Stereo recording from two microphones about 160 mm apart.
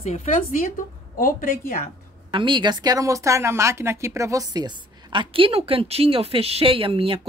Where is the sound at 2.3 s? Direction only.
30° right (ahead or behind).